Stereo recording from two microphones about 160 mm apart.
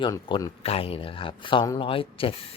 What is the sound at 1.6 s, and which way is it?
Speech, 20° left (ahead or behind).